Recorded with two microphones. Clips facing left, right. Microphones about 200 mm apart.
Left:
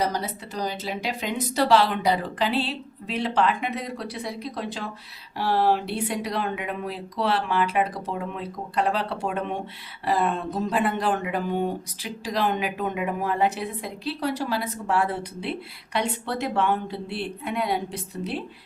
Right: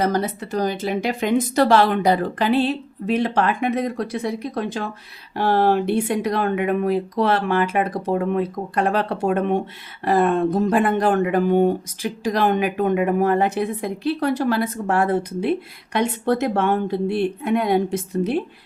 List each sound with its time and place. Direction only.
0.0 s speech: 50° right (ahead or behind)